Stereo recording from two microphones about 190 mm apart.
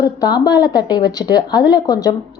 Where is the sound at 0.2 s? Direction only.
20° left (ahead or behind).